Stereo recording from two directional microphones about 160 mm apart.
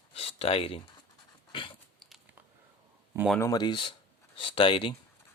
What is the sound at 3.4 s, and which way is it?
Speech, 20° left (ahead or behind).